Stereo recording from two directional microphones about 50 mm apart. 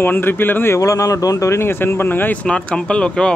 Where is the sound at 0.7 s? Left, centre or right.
Left.